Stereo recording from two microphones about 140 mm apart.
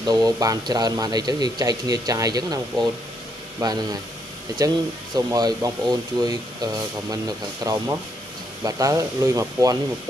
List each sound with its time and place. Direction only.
0.0 s speech: 25° right (ahead or behind)